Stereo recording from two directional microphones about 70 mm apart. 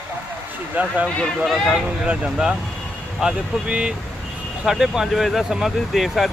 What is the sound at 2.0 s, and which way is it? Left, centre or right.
Speech, centre.